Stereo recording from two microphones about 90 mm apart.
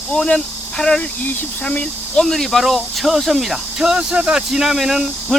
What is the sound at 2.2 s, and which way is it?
Speech, centre (ahead or behind).